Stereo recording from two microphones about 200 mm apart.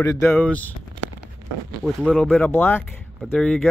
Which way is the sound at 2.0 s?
5° left (ahead or behind).